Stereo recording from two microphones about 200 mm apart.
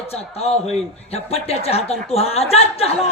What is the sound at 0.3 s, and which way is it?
Speech, 30° left (ahead or behind).